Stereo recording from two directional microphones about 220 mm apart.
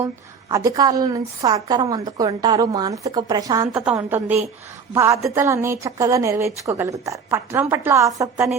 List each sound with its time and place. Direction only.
0.0 s a woman's voice: 15° right (ahead or behind)
3.7 s a woman's voice: 5° right (ahead or behind)